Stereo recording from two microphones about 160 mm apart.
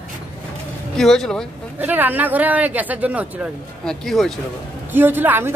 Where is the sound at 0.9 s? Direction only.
Centre (ahead or behind).